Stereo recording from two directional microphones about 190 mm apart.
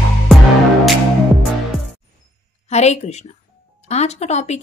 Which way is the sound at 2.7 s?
35° left (ahead or behind).